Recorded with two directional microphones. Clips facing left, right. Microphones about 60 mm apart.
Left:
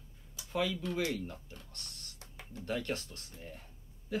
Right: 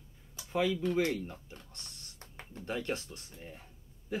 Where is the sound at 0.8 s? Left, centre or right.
Right.